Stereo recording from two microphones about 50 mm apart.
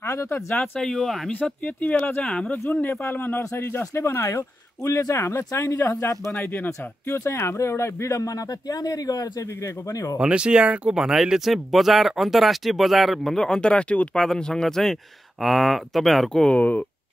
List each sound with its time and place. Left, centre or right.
0.0 s a sound: left
0.6 s speech: centre
1.3 s speech: left
3.9 s speech: left
5.7 s speech: left
6.3 s speech: left
7.1 s speech: left
9.4 s speech: left
10.1 s speech: right; by 13.4 s centre
13.4 s speech: centre
14.2 s speech: centre
16.4 s speech: left